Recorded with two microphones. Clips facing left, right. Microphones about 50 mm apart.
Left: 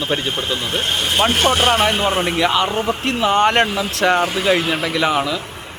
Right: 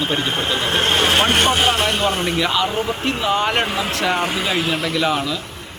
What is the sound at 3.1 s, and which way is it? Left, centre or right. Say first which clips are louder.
Speech: left 5 dB; left.